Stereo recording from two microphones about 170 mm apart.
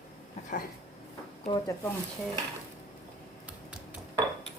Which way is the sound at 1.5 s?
20° left (ahead or behind).